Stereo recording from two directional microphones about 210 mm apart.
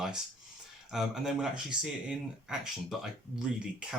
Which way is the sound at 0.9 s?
Centre (ahead or behind).